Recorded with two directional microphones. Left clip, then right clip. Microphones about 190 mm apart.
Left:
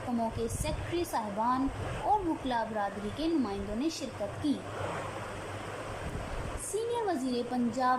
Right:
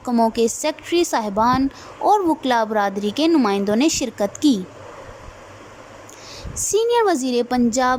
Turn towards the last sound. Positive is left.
turn(degrees=-55)  # may be behind; listen again after turning